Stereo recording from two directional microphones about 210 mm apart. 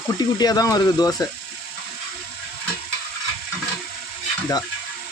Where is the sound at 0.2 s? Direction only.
20° left (ahead or behind).